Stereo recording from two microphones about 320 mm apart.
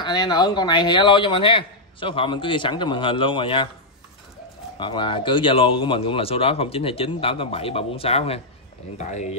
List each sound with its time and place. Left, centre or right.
0.0 s speech: centre
4.7 s speech: centre